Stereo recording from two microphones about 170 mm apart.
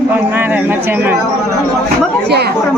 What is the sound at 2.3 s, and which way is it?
Speech, 70° right (ahead or behind).